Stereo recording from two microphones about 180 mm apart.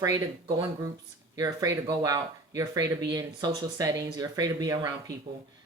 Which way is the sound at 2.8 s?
70° right (ahead or behind).